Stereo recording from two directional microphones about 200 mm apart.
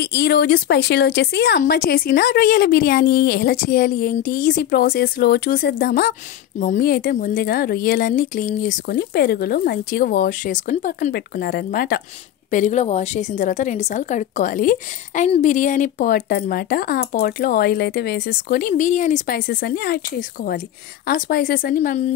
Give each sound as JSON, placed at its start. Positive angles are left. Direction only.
{"t": 0.0, "sound": "a woman's voice", "side_deg": 55}